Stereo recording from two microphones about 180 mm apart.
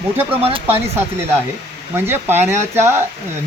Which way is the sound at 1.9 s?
10° right (ahead or behind).